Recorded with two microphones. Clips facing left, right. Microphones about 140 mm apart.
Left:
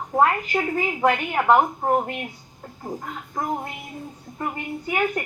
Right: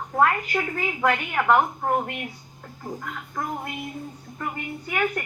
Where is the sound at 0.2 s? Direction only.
25° left (ahead or behind).